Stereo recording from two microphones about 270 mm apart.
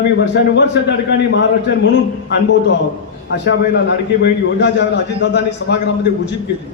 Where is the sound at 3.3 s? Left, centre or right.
Left.